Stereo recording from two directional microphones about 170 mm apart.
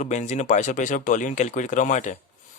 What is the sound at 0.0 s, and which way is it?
Speech, 45° left (ahead or behind).